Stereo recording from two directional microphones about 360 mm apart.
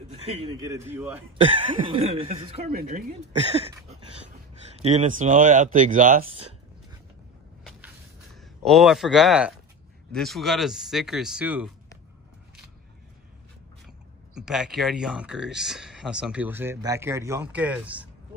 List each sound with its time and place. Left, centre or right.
0.1 s speech: centre
8.6 s speech: centre
14.3 s speech: centre